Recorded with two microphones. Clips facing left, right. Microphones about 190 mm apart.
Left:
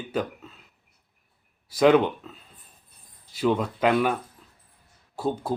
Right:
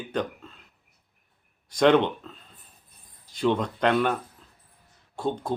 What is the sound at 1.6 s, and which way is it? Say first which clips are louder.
Speech: left 1 dB; 5° left (ahead or behind).